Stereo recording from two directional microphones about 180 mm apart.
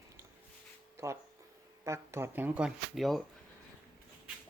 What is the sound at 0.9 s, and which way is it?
Speech, 15° right (ahead or behind).